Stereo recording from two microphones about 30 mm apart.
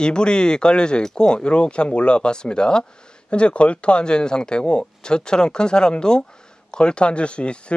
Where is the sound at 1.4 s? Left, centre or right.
Left.